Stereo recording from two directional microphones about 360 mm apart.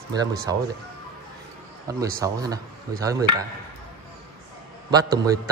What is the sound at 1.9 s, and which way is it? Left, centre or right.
A man's voice, centre.